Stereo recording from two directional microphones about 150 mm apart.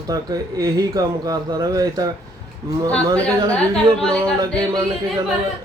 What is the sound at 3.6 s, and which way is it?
Speech, 5° left (ahead or behind).